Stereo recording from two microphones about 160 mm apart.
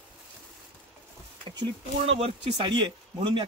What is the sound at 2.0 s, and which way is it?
Speech, 40° right (ahead or behind).